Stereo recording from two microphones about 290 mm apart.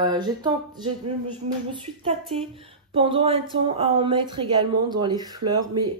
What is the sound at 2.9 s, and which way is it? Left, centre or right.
Speech, centre.